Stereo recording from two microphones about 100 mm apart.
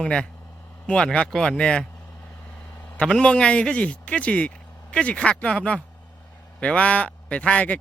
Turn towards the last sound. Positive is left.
turn(degrees=15)  # may be behind; listen again after turning